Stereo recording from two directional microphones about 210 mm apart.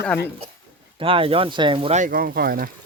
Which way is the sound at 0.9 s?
25° right (ahead or behind).